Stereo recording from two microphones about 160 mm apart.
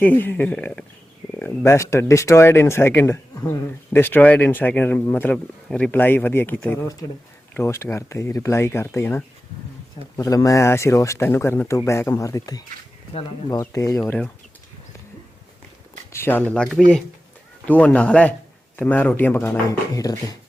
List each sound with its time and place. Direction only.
0.0 s speech: 10° left (ahead or behind)
16.1 s speech: 15° left (ahead or behind)